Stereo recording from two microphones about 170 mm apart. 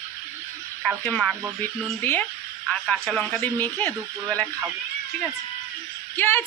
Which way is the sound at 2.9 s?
Centre (ahead or behind).